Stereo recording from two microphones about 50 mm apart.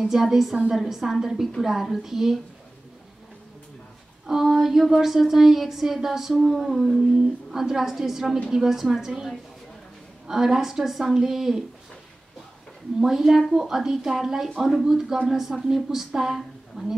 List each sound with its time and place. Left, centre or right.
0.0 s a woman's voice: centre
4.3 s a woman's voice: centre
13.0 s a woman's voice: centre